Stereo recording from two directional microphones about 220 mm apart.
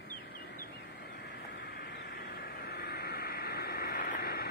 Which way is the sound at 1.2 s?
50° left (ahead or behind).